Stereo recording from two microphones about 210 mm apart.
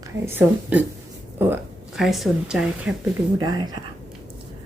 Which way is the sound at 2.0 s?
Centre (ahead or behind).